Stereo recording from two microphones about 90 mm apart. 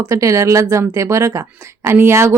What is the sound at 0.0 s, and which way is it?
Speech, 35° right (ahead or behind).